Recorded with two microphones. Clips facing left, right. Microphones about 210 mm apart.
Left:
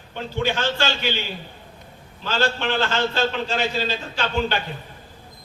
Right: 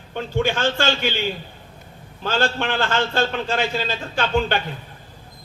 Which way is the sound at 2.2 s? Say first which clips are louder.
Right 1 dB; 50° right (ahead or behind).